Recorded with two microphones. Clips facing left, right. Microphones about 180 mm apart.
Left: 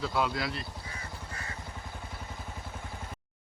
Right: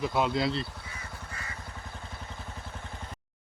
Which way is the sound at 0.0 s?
20° right (ahead or behind).